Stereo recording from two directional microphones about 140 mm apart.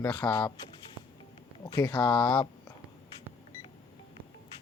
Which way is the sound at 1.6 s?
30° left (ahead or behind).